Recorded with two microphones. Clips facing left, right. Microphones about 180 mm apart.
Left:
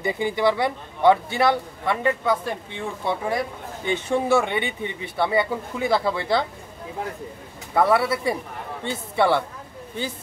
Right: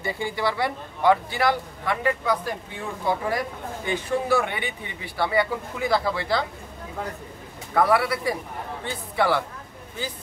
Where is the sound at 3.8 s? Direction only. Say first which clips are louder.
Left 3 dB; 25° left (ahead or behind).